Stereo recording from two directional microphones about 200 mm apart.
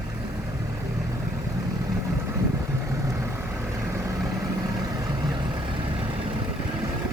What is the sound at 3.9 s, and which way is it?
Vehicle, 15° right (ahead or behind).